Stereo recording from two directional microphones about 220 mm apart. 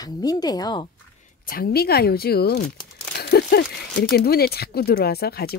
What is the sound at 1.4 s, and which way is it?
Speech, 40° left (ahead or behind).